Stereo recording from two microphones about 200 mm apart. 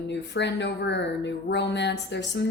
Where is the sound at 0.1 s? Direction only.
60° left (ahead or behind).